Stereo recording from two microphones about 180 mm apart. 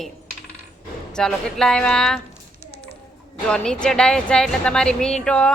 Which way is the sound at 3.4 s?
5° left (ahead or behind).